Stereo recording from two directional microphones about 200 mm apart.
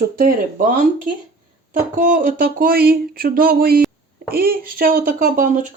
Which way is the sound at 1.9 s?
40° right (ahead or behind).